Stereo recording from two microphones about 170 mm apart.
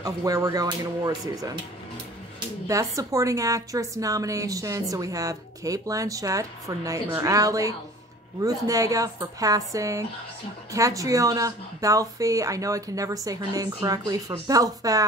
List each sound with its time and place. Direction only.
0.0 s a woman's voice: 20° right (ahead or behind)
2.7 s a woman's voice: 20° right (ahead or behind)